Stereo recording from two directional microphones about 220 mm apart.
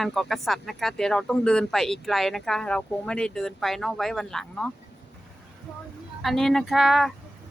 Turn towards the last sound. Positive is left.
turn(degrees=0)  # may be behind; listen again after turning